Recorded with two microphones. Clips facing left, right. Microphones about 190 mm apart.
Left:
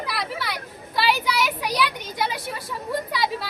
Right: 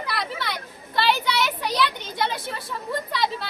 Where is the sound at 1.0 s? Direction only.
5° left (ahead or behind).